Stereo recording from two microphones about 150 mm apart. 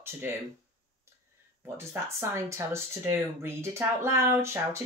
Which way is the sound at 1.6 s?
15° right (ahead or behind).